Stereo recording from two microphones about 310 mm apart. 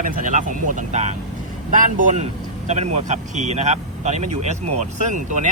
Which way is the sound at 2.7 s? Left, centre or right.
Right.